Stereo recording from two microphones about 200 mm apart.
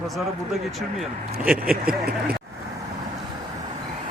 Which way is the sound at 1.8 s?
50° right (ahead or behind).